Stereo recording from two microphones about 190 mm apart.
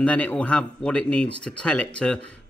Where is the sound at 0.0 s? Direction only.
5° left (ahead or behind).